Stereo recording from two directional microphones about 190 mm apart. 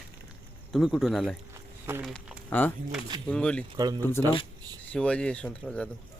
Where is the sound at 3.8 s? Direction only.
20° right (ahead or behind).